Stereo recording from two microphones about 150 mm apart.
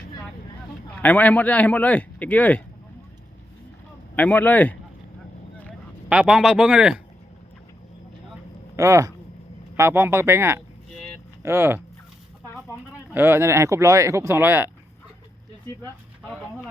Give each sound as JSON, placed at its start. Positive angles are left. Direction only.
{"t": 0.9, "sound": "speech", "side_deg": 10}
{"t": 4.1, "sound": "speech", "side_deg": 10}
{"t": 6.1, "sound": "speech", "side_deg": -5}
{"t": 8.7, "sound": "speech", "side_deg": -20}
{"t": 13.1, "sound": "speech", "side_deg": -15}